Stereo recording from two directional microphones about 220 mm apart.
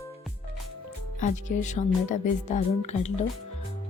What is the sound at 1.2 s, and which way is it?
Speech, 35° left (ahead or behind).